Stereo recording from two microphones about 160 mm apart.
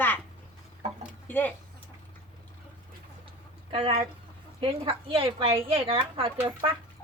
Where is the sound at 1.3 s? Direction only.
10° left (ahead or behind).